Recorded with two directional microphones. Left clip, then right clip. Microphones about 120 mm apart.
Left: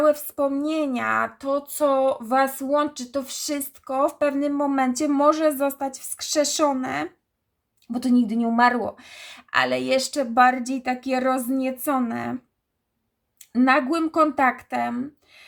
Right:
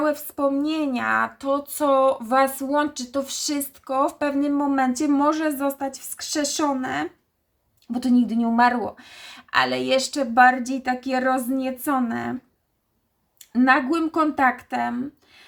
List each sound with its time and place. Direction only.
0.0 s speech: 30° left (ahead or behind)
13.5 s speech: 30° left (ahead or behind)